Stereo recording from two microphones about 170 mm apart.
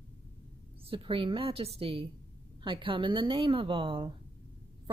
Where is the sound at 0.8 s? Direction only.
30° right (ahead or behind).